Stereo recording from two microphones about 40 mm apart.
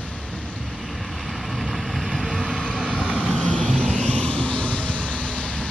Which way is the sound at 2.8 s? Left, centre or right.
Right.